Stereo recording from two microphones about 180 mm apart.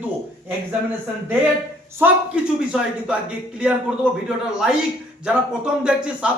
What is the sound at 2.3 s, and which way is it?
Speech, 5° right (ahead or behind).